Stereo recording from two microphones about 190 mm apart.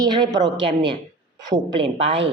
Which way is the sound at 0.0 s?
20° right (ahead or behind).